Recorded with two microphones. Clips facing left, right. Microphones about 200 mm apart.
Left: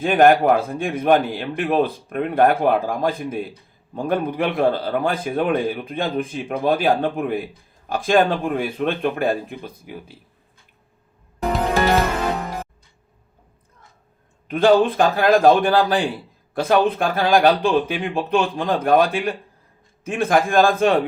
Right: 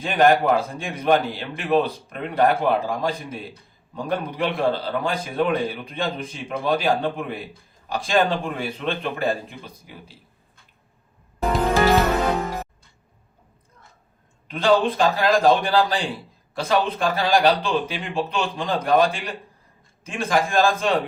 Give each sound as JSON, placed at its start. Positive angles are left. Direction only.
{"t": 0.0, "sound": "a man's voice", "side_deg": 50}
{"t": 14.4, "sound": "a man's voice", "side_deg": 50}